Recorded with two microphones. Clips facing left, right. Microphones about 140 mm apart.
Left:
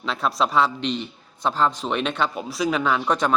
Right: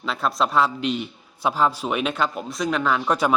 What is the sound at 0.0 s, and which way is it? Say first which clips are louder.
A man's voice: even; centre (ahead or behind).